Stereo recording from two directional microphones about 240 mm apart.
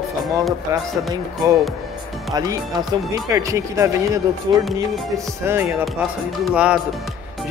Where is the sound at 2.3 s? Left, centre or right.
Centre.